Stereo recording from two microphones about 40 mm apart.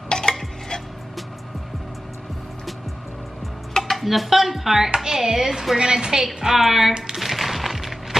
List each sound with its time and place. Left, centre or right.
0.1 s stir: centre
3.7 s a woman's voice: centre
6.2 s a woman's voice: centre
6.9 s speech: centre
7.2 s music: centre